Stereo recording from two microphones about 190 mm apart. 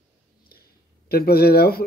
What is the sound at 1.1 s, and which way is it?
Speech, 55° left (ahead or behind).